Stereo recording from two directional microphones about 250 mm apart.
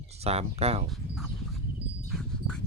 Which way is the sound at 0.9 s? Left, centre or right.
Centre.